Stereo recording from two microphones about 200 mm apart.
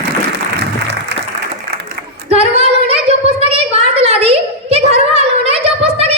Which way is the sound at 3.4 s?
30° right (ahead or behind).